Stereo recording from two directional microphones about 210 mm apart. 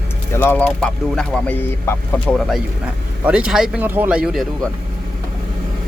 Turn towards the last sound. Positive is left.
turn(degrees=0)  # may be behind; listen again after turning